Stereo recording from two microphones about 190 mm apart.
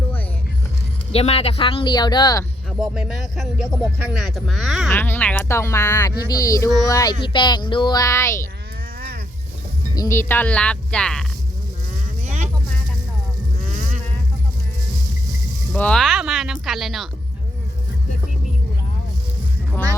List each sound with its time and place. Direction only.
1.1 s speech: 30° left (ahead or behind)
2.8 s speech: 5° right (ahead or behind)
4.9 s speech: 10° left (ahead or behind)
9.9 s speech: 15° left (ahead or behind)
12.2 s a sound: 35° right (ahead or behind)
15.7 s speech: 5° left (ahead or behind)